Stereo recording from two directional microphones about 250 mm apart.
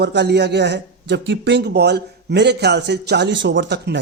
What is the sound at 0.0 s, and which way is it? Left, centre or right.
A man's voice, right.